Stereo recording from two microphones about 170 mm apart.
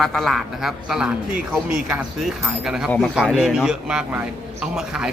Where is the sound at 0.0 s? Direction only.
Centre (ahead or behind).